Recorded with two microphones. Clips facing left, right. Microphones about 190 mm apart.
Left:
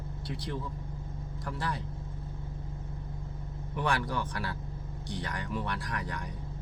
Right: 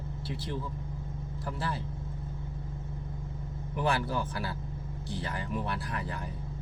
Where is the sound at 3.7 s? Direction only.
25° right (ahead or behind).